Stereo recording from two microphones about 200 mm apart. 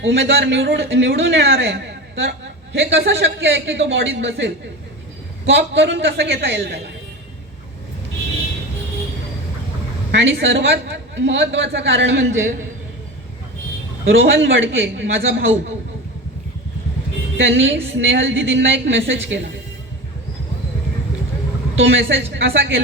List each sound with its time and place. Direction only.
0.0 s a man's voice: 65° right (ahead or behind)
10.1 s a man's voice: 65° right (ahead or behind)
14.0 s a man's voice: 75° right (ahead or behind)
17.3 s a man's voice: 70° right (ahead or behind)
21.8 s a man's voice: 70° right (ahead or behind)